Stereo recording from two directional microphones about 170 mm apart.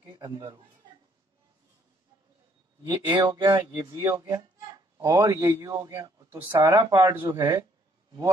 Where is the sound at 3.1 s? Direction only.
30° right (ahead or behind).